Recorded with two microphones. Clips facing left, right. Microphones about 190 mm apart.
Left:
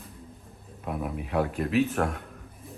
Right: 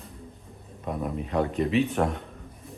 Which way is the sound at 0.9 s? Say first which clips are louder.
Right 2 dB; 5° left (ahead or behind).